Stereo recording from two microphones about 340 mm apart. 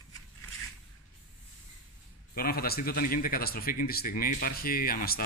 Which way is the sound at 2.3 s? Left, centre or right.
Left.